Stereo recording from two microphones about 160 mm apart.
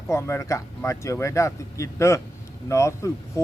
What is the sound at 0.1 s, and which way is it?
Speech, 15° left (ahead or behind).